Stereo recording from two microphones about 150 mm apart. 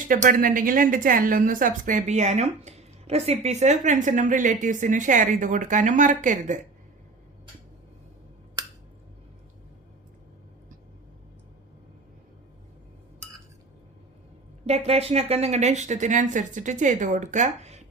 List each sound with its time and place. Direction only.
0.1 s a woman's voice: 65° right (ahead or behind)
14.7 s speech: 45° right (ahead or behind)